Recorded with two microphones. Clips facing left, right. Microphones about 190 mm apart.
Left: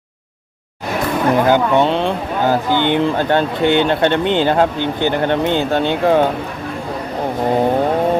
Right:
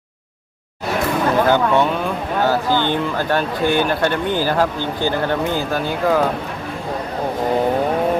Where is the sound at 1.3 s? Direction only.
15° left (ahead or behind).